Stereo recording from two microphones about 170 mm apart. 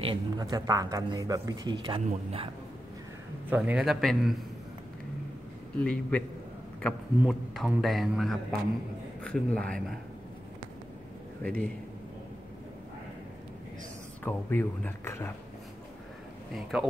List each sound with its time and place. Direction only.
0.0 s speech: 25° right (ahead or behind)
3.4 s a man's voice: 10° right (ahead or behind)
5.8 s speech: 5° left (ahead or behind)
7.2 s a man's voice: 5° right (ahead or behind)
11.4 s speech: 5° left (ahead or behind)
14.2 s speech: 10° left (ahead or behind)